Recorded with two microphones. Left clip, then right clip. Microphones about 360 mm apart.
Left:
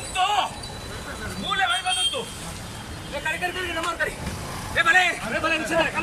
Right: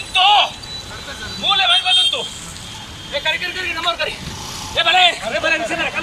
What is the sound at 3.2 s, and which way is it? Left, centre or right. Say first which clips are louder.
Speech: right 6 dB; centre.